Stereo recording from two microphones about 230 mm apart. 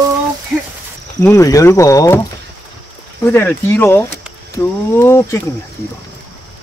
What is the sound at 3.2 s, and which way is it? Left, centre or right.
Speech, centre.